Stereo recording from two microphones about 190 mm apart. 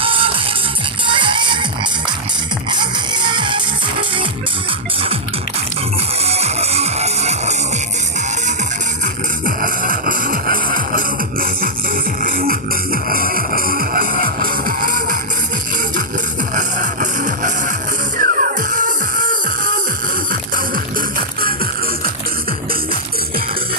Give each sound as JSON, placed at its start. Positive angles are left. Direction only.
{"t": 0.0, "sound": "music", "side_deg": -30}
{"t": 2.6, "sound": "music", "side_deg": -25}
{"t": 6.2, "sound": "music", "side_deg": -35}
{"t": 9.6, "sound": "music", "side_deg": -45}
{"t": 16.6, "sound": "music", "side_deg": -40}